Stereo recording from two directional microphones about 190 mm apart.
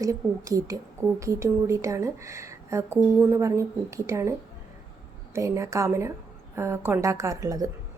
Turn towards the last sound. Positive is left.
turn(degrees=-20)  # may be behind; listen again after turning